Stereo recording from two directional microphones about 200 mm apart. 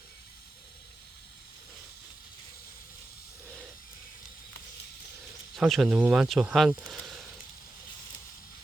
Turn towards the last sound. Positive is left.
turn(degrees=0)  # may be behind; listen again after turning